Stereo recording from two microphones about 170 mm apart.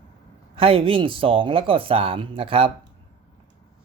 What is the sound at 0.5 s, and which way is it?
Speech, 35° right (ahead or behind).